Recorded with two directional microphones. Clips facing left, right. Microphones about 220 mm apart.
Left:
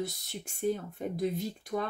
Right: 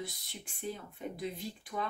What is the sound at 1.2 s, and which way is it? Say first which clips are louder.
Speech: left 10 dB; 45° left (ahead or behind).